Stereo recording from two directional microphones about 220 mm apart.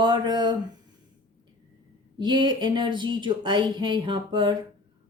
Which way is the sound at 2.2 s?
20° right (ahead or behind).